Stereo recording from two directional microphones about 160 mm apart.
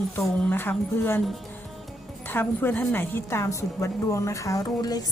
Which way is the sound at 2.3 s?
10° left (ahead or behind).